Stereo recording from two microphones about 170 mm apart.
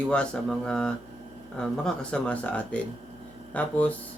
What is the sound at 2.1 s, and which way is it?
Speech, 5° left (ahead or behind).